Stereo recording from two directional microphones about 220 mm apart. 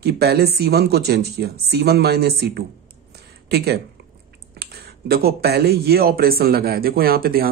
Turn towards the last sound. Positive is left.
turn(degrees=-40)  # may be behind; listen again after turning